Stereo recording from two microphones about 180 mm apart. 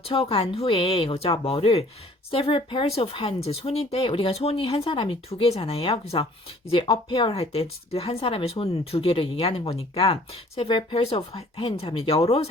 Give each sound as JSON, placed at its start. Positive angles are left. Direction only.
{"t": 0.1, "sound": "speech", "side_deg": 30}